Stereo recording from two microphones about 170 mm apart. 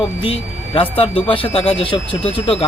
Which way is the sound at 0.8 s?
35° left (ahead or behind).